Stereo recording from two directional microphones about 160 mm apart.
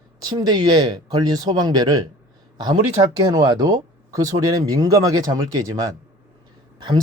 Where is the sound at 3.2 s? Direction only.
25° right (ahead or behind).